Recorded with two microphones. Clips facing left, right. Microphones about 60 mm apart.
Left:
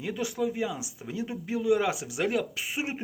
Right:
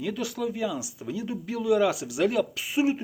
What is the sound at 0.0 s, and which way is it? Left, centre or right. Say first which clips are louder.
Speech: even; left.